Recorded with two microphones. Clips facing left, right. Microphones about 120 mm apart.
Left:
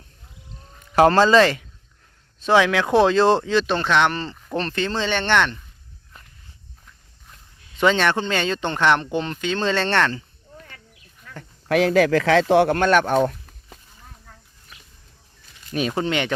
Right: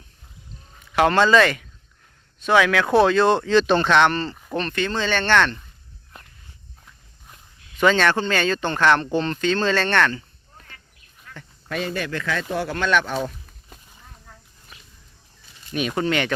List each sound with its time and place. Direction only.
0.9 s speech: 35° left (ahead or behind)
3.4 s speech: 5° left (ahead or behind)
4.5 s speech: 30° left (ahead or behind); by 5.5 s 15° left (ahead or behind)
7.8 s speech: 20° left (ahead or behind)
11.7 s speech: 90° left
12.7 s speech: 50° left (ahead or behind)
15.7 s speech: 30° left (ahead or behind)